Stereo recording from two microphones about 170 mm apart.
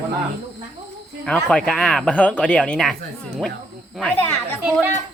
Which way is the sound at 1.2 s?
5° left (ahead or behind).